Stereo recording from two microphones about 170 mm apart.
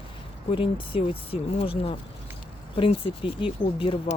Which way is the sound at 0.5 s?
30° left (ahead or behind).